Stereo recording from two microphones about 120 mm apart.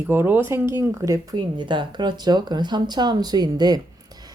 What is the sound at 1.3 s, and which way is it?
Speech, 40° right (ahead or behind).